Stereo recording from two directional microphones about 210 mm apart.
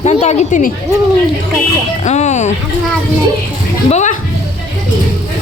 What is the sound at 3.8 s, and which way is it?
Music, 35° left (ahead or behind).